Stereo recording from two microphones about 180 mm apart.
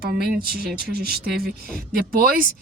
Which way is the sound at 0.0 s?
55° right (ahead or behind).